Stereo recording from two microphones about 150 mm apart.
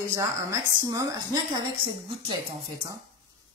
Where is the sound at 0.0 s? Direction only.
20° right (ahead or behind).